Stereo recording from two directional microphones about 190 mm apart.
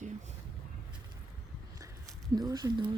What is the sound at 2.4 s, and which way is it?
Speech, 20° right (ahead or behind).